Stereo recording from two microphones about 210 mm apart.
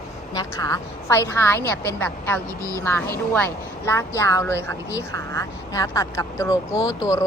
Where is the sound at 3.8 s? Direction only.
10° left (ahead or behind).